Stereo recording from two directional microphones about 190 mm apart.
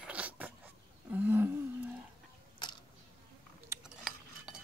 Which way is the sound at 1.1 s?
10° right (ahead or behind).